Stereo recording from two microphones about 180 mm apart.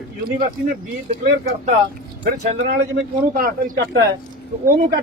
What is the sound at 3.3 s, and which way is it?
Speech, 55° right (ahead or behind).